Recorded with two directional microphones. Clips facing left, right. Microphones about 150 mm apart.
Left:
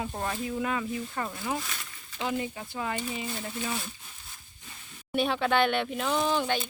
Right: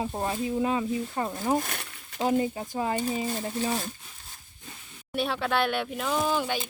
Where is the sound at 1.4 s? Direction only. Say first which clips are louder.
Right 6 dB; 45° right (ahead or behind).